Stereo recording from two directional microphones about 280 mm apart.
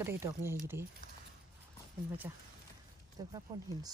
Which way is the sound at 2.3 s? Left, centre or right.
Centre.